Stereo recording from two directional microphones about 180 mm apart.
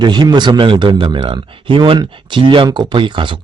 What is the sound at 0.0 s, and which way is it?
Speech, 25° right (ahead or behind).